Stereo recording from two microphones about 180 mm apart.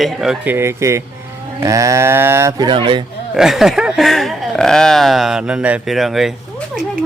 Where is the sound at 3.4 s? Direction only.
Centre (ahead or behind).